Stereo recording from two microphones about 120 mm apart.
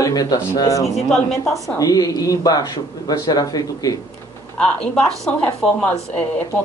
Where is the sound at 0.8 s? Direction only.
5° left (ahead or behind).